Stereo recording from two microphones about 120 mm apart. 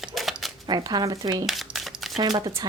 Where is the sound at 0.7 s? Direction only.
35° right (ahead or behind).